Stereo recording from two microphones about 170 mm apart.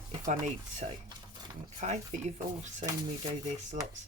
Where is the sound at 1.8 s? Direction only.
40° right (ahead or behind).